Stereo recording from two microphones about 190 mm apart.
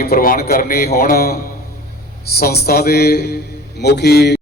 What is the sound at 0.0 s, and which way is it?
A man's voice, 50° left (ahead or behind).